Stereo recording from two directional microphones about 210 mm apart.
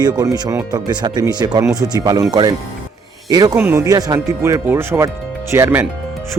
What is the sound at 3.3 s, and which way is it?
Speech, 15° right (ahead or behind).